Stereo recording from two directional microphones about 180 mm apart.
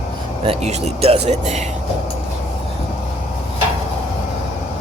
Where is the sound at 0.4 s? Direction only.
35° right (ahead or behind).